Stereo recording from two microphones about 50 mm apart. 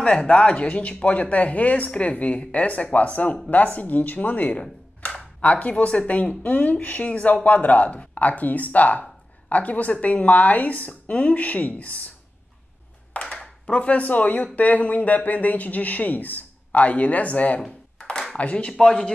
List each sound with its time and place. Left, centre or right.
0.0 s speech: left
13.1 s speech: left
18.7 s speech: centre